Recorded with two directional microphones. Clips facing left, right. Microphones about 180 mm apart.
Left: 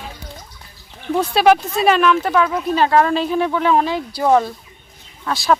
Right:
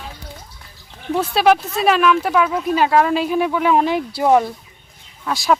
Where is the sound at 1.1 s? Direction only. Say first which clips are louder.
Left 1 dB; centre (ahead or behind).